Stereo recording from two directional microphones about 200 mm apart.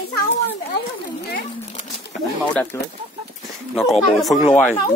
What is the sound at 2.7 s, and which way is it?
Speech, 15° left (ahead or behind).